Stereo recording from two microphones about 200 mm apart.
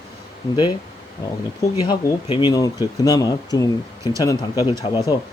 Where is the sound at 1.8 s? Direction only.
25° left (ahead or behind).